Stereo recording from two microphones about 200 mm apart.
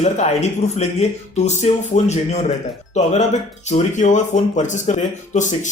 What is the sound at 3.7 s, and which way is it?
Speech, 35° left (ahead or behind).